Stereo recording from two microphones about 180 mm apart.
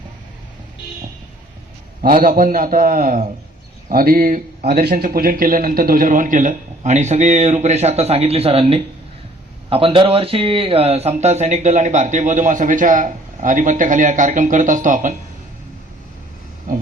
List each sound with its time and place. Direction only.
2.0 s a man's voice: 45° right (ahead or behind)